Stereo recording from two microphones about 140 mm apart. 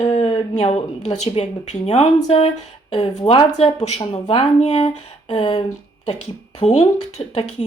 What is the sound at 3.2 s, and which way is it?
Speech, 40° left (ahead or behind).